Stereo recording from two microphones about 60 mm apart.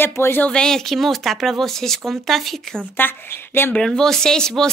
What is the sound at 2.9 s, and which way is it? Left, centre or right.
Speech, left.